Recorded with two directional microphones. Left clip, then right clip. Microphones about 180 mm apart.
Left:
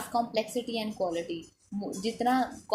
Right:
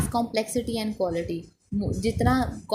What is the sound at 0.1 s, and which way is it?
A woman's voice, 50° right (ahead or behind).